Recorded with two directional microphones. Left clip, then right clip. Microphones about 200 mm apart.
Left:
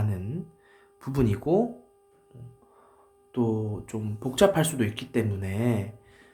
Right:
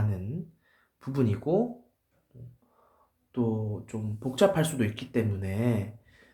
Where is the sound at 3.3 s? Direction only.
20° left (ahead or behind).